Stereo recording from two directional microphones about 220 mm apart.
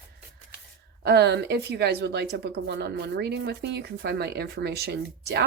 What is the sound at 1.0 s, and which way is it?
Speech, 50° right (ahead or behind).